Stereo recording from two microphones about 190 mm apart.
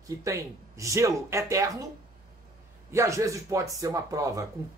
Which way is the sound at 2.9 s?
15° right (ahead or behind).